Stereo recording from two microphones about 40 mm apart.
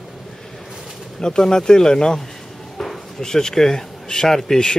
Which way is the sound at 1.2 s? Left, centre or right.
Centre.